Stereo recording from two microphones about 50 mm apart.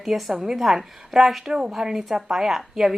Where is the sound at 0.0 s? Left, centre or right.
Centre.